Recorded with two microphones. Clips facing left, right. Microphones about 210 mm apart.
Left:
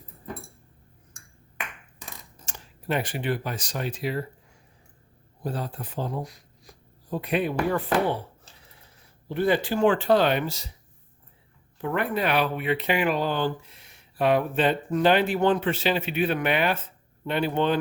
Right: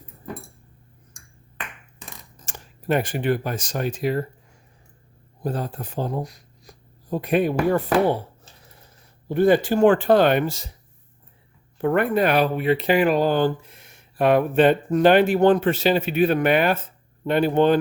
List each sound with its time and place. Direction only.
2.5 s speech: 45° right (ahead or behind)
5.4 s speech: 45° right (ahead or behind)
9.3 s speech: 45° right (ahead or behind)
11.8 s speech: 50° right (ahead or behind)